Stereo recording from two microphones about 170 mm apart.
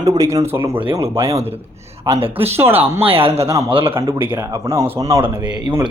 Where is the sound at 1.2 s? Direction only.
35° right (ahead or behind).